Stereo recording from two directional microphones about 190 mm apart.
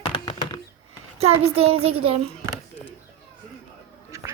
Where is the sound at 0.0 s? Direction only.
25° left (ahead or behind).